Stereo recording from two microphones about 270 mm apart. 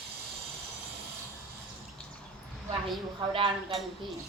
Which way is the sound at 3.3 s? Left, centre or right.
Centre.